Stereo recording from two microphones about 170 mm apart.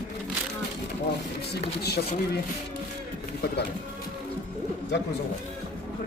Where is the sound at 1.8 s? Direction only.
70° left (ahead or behind).